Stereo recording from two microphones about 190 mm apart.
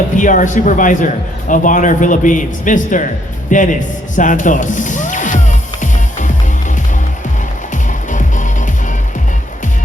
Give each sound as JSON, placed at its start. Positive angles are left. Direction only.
{"t": 0.2, "sound": "a man's voice", "side_deg": 40}
{"t": 3.5, "sound": "music", "side_deg": 40}
{"t": 8.1, "sound": "music", "side_deg": 40}